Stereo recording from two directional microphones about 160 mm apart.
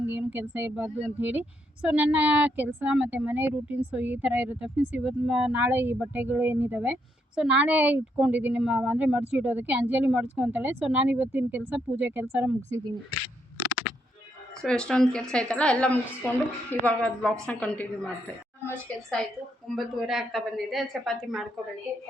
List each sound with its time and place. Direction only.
0.1 s a woman's voice: 10° right (ahead or behind)
14.6 s a woman's voice: 5° left (ahead or behind)
19.7 s a woman's voice: centre (ahead or behind)